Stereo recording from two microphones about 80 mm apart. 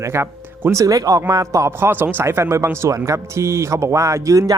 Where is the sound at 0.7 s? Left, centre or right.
Right.